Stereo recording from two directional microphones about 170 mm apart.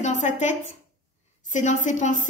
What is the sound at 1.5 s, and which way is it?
Speech, 45° left (ahead or behind).